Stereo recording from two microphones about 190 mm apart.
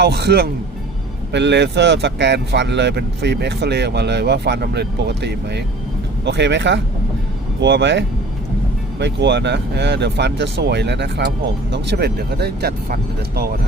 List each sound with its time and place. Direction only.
0.0 s speech: 60° right (ahead or behind)